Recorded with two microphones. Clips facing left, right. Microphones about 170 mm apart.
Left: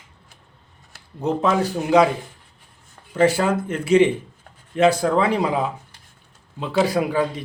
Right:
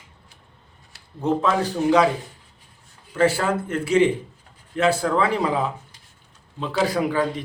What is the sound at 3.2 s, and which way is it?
Speech, 15° left (ahead or behind).